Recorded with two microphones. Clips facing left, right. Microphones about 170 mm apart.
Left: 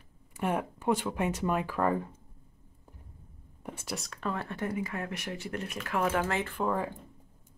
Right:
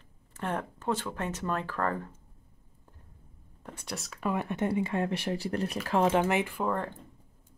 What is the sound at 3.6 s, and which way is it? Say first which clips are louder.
Speech: left 2 dB; 5° left (ahead or behind).